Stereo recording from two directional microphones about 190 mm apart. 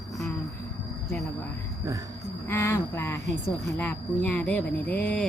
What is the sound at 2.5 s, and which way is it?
Cricket, 10° left (ahead or behind).